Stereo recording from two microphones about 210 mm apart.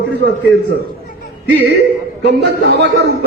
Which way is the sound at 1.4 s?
55° right (ahead or behind).